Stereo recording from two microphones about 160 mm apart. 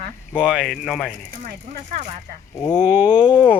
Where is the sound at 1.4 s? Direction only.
55° right (ahead or behind).